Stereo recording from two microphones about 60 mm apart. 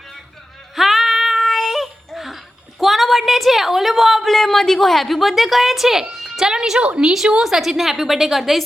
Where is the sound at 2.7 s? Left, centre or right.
Centre.